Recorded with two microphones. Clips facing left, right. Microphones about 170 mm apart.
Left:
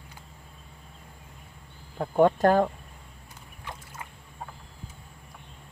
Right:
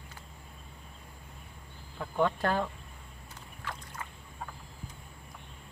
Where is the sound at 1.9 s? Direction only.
40° left (ahead or behind).